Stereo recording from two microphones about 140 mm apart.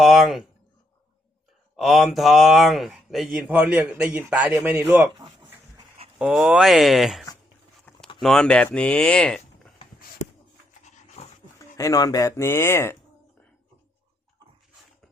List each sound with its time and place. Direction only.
0.0 s speech: centre (ahead or behind)
1.7 s speech: centre (ahead or behind)
5.1 s a sound: 30° right (ahead or behind)
6.1 s speech: 5° right (ahead or behind)
10.8 s dog: 50° left (ahead or behind)
11.8 s speech: 25° left (ahead or behind)